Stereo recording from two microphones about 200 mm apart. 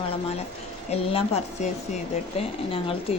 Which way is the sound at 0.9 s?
30° left (ahead or behind).